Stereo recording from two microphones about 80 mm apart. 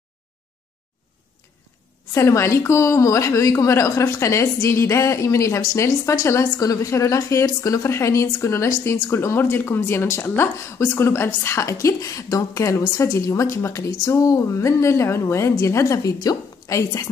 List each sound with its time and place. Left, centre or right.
2.1 s speech: left
6.6 s a woman's voice: left